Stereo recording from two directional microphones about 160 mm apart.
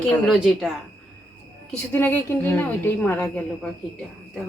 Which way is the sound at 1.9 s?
10° left (ahead or behind).